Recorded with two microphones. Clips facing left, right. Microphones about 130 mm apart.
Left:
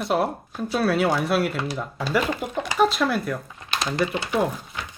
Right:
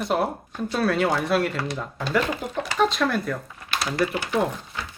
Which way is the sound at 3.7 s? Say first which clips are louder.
Even; 20° left (ahead or behind).